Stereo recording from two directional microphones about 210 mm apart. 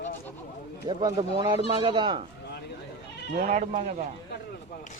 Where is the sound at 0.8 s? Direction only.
20° right (ahead or behind).